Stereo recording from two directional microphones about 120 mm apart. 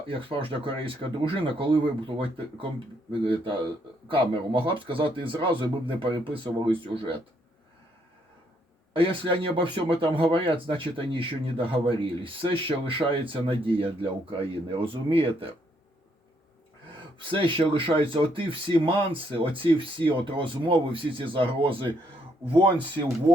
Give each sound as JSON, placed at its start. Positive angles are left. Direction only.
{"t": 0.1, "sound": "speech", "side_deg": -50}
{"t": 4.1, "sound": "speech", "side_deg": -45}
{"t": 9.0, "sound": "speech", "side_deg": -45}
{"t": 17.2, "sound": "speech", "side_deg": -45}